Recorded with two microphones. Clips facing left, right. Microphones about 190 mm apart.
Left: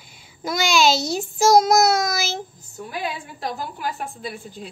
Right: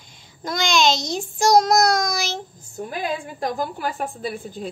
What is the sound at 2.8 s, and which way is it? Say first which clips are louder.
A woman's voice: right 2 dB; 50° right (ahead or behind).